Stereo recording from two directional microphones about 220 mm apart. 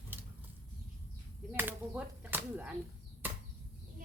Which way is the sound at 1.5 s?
10° right (ahead or behind).